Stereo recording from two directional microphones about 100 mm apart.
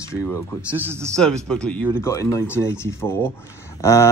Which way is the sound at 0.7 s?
20° right (ahead or behind).